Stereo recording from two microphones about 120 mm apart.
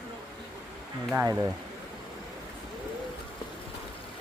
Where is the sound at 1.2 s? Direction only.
30° right (ahead or behind).